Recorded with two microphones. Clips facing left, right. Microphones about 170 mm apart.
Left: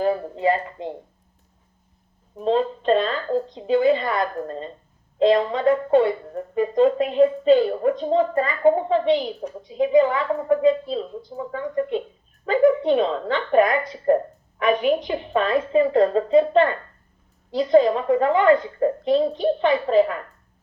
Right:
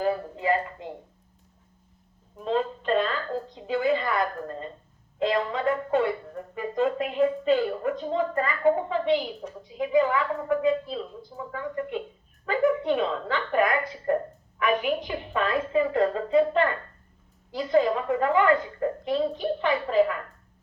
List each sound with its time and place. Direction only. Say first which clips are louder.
0.0 s speech: left 5 dB; 20° left (ahead or behind)
2.3 s speech: left 6 dB; 25° left (ahead or behind)